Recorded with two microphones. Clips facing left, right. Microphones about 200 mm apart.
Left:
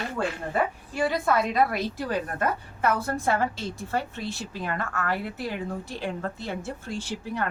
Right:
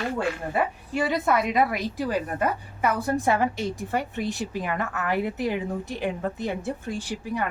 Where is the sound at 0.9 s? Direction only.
20° right (ahead or behind).